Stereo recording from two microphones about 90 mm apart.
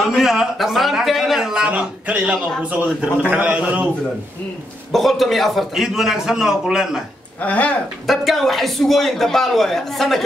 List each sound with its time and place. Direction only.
0.0 s a man's voice: 5° right (ahead or behind)
4.9 s a man's voice: centre (ahead or behind)
7.3 s speech: 15° left (ahead or behind)
8.1 s a man's voice: centre (ahead or behind)